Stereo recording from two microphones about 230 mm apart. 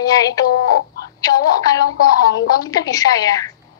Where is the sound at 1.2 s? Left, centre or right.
Centre.